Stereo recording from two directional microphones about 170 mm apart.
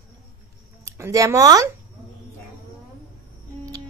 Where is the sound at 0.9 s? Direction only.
15° right (ahead or behind).